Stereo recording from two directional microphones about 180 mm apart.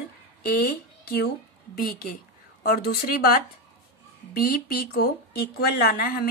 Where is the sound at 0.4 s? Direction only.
55° left (ahead or behind).